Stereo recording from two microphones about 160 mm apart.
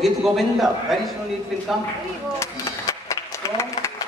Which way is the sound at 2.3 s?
15° left (ahead or behind).